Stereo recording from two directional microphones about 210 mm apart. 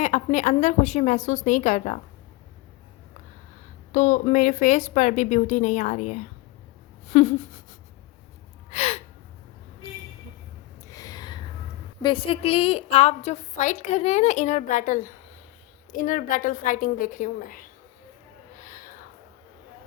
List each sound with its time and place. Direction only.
0.0 s a woman's voice: 35° left (ahead or behind)
3.9 s a woman's voice: 35° left (ahead or behind)
8.7 s gasp: 30° left (ahead or behind)
10.8 s a sound: 15° left (ahead or behind)
12.0 s a woman's voice: 25° left (ahead or behind)
18.6 s a sound: 40° left (ahead or behind)